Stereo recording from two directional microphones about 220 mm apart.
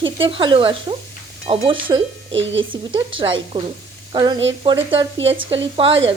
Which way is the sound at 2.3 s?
55° right (ahead or behind).